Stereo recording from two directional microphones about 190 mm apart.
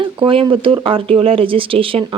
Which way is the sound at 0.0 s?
25° right (ahead or behind).